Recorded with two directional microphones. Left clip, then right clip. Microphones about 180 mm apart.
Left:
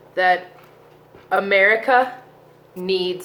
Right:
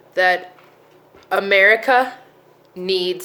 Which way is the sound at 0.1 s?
45° right (ahead or behind).